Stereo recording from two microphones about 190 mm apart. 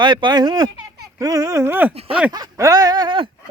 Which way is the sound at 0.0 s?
25° right (ahead or behind).